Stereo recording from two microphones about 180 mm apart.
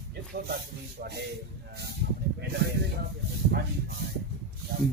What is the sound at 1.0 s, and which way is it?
Speech, 65° right (ahead or behind).